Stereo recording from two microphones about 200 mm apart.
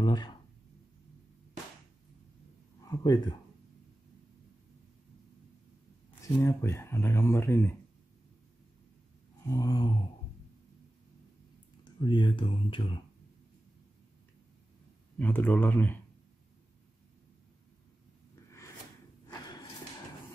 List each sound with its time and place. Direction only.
0.0 s speech: 20° left (ahead or behind)
2.8 s speech: 20° left (ahead or behind)
6.2 s speech: 15° left (ahead or behind)
9.5 s speech: 15° left (ahead or behind)
12.0 s speech: 25° left (ahead or behind)
15.1 s speech: 10° left (ahead or behind)